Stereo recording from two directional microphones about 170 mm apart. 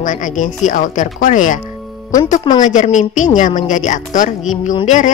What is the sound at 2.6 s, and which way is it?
Speech, 45° left (ahead or behind).